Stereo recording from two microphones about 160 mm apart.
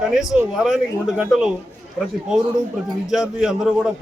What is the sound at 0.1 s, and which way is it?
A man's voice, centre (ahead or behind).